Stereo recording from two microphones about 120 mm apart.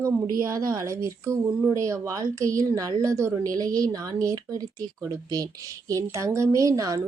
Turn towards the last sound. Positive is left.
turn(degrees=-25)  # may be behind; listen again after turning